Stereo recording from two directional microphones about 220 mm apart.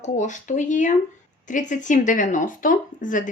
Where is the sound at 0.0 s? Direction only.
35° left (ahead or behind).